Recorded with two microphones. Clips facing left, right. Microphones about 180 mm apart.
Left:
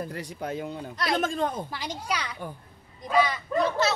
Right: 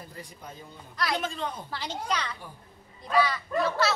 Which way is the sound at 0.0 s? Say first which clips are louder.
Left 10 dB; 75° left (ahead or behind).